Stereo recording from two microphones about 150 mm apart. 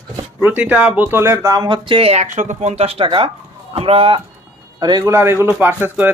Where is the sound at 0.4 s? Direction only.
10° right (ahead or behind); by 2.2 s 40° right (ahead or behind).